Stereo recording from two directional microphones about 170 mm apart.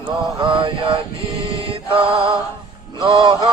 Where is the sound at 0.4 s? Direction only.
30° right (ahead or behind).